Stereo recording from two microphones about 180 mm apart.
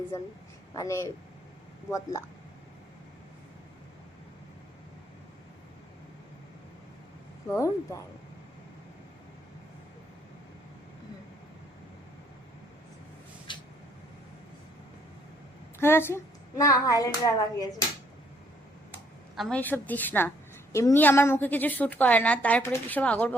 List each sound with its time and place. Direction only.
0.7 s speech: 15° left (ahead or behind)
7.4 s a woman's voice: 15° left (ahead or behind)
13.5 s vehicle: 25° left (ahead or behind)
15.8 s a woman's voice: 10° left (ahead or behind)
19.4 s a woman's voice: 5° left (ahead or behind)